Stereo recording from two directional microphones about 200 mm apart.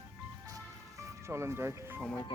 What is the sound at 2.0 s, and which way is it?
Speech, 5° left (ahead or behind).